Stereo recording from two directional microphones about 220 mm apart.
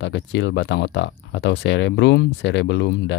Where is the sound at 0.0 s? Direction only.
55° left (ahead or behind).